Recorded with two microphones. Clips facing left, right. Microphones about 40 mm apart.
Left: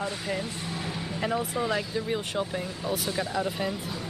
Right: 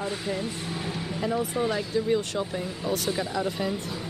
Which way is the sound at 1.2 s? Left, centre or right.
Left.